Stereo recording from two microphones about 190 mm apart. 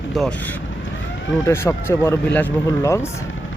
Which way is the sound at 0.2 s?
5° left (ahead or behind).